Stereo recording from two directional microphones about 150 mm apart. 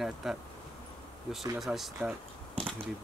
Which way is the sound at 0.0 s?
Centre (ahead or behind).